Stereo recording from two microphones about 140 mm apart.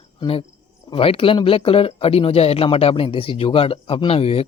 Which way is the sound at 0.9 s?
40° left (ahead or behind).